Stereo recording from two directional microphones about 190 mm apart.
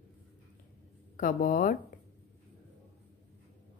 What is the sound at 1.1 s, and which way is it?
Speech, 45° left (ahead or behind).